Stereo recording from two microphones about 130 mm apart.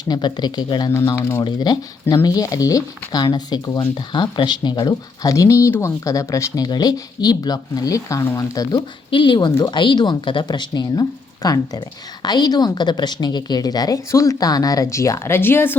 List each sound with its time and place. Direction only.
0.0 s speech: 35° left (ahead or behind)
1.1 s speech: 20° left (ahead or behind)
1.5 s speech: 35° left (ahead or behind)
9.0 s speech: 40° left (ahead or behind); by 15.7 s 15° left (ahead or behind)